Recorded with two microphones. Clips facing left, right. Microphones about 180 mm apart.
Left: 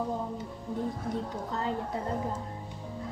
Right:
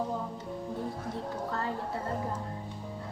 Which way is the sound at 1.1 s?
20° left (ahead or behind).